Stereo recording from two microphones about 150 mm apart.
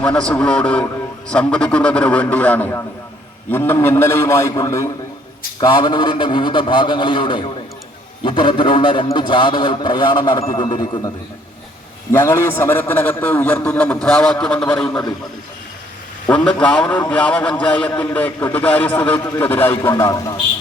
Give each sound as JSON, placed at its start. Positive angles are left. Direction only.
{"t": 0.0, "sound": "a man's voice", "side_deg": 5}
{"t": 12.1, "sound": "a man's voice", "side_deg": 15}
{"t": 16.3, "sound": "a man's voice", "side_deg": 5}